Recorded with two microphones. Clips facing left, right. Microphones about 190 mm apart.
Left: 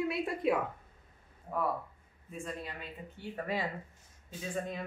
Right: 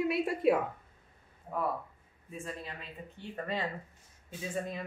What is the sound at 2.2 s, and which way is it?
Speech, 5° right (ahead or behind).